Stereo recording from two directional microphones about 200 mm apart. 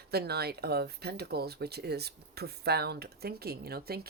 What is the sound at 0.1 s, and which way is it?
Speech, 55° right (ahead or behind).